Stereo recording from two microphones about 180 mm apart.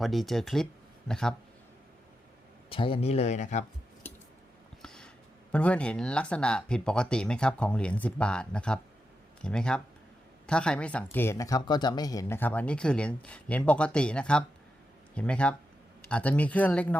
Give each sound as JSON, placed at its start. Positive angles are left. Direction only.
{"t": 0.0, "sound": "speech", "side_deg": 0}
{"t": 2.6, "sound": "speech", "side_deg": 30}
{"t": 4.8, "sound": "a sound", "side_deg": 5}
{"t": 5.5, "sound": "speech", "side_deg": 5}